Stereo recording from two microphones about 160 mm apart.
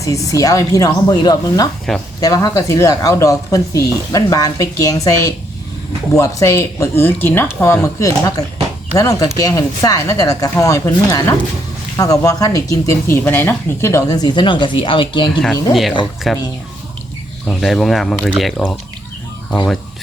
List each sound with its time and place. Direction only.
0.0 s speech: 20° left (ahead or behind)
1.9 s speech: centre (ahead or behind)
2.2 s speech: 20° left (ahead or behind)
15.7 s speech: centre (ahead or behind)
17.4 s speech: 5° left (ahead or behind)